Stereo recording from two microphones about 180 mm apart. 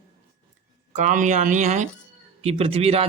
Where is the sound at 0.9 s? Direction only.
45° right (ahead or behind).